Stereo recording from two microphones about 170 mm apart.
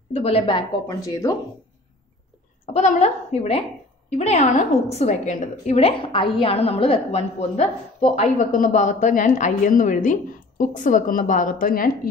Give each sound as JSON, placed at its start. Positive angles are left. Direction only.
{"t": 0.1, "sound": "a woman's voice", "side_deg": 35}
{"t": 0.8, "sound": "speech", "side_deg": 20}
{"t": 2.7, "sound": "a woman's voice", "side_deg": 40}